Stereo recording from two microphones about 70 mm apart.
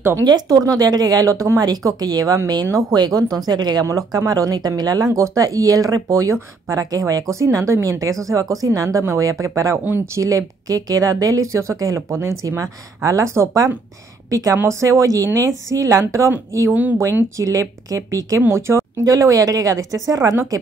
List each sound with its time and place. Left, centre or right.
0.2 s speech: right
1.9 s speech: right
3.8 s speech: right
18.5 s speech: right
19.0 s speech: right